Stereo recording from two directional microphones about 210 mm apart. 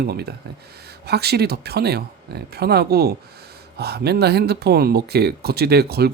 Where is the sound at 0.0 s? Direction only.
50° right (ahead or behind).